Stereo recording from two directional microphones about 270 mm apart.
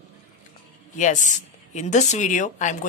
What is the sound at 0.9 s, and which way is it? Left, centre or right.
Speech, left.